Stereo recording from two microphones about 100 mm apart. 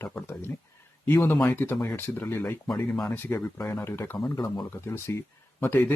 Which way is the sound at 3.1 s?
20° left (ahead or behind).